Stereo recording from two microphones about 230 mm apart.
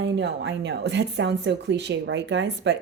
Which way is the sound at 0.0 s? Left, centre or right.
Right.